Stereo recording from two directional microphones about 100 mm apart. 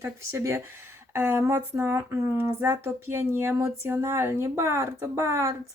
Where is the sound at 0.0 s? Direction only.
25° right (ahead or behind).